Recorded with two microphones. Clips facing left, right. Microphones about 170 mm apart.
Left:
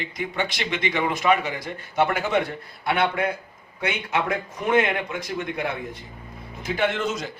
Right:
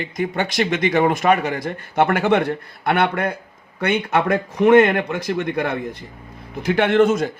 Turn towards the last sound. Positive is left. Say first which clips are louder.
# right 9 dB
turn(degrees=-55)  # may be behind; listen again after turning